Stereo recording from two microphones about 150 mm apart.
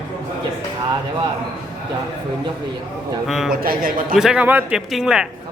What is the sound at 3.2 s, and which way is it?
Speech, centre (ahead or behind).